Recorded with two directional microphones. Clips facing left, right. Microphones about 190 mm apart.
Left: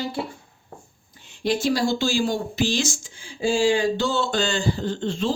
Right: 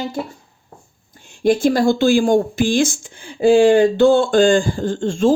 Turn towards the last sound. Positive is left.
turn(degrees=-45)  # may be behind; listen again after turning